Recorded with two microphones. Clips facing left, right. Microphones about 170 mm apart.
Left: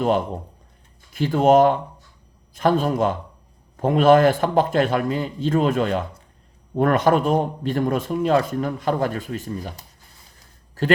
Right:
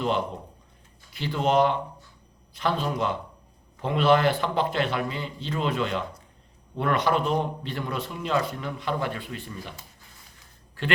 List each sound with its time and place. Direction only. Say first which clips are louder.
1.1 s speech: left 8 dB; 45° left (ahead or behind)